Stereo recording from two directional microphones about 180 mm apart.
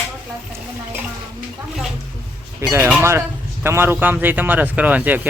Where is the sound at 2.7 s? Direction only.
10° right (ahead or behind).